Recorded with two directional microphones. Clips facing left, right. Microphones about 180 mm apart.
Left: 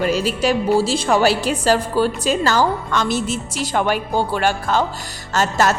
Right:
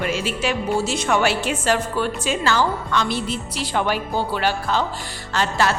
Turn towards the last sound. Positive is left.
turn(degrees=45)  # may be behind; listen again after turning